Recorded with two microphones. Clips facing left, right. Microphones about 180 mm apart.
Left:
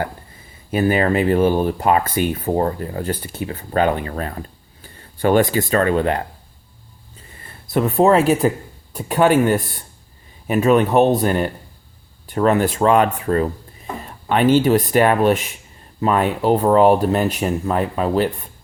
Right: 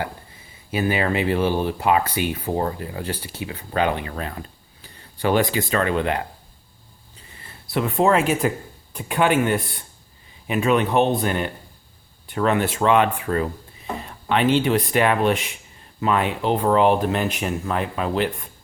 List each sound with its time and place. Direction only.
0.7 s speech: 45° left (ahead or behind)
7.3 s speech: 45° left (ahead or behind)